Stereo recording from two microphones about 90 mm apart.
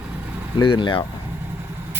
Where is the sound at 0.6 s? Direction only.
65° left (ahead or behind).